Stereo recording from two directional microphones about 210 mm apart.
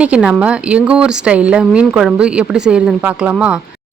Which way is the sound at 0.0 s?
5° right (ahead or behind).